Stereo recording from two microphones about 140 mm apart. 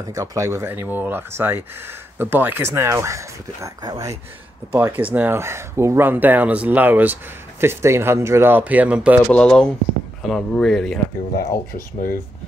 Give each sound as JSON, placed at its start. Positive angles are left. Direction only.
{"t": 0.0, "sound": "speech", "side_deg": -25}
{"t": 9.3, "sound": "speech", "side_deg": 5}
{"t": 11.3, "sound": "speech", "side_deg": 25}
{"t": 11.7, "sound": "speech", "side_deg": 80}